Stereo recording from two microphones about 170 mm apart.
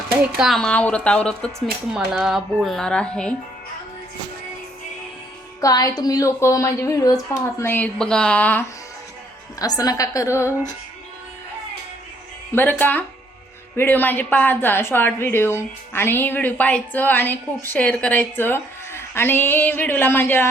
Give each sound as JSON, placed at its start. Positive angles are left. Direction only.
{"t": 0.3, "sound": "speech", "side_deg": 0}
{"t": 5.5, "sound": "speech", "side_deg": 20}
{"t": 9.6, "sound": "speech", "side_deg": 20}
{"t": 12.5, "sound": "speech", "side_deg": 10}